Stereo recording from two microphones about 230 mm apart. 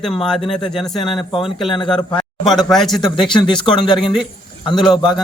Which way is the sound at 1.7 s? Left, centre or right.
Left.